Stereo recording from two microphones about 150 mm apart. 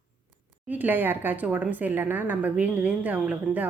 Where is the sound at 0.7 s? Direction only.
10° right (ahead or behind).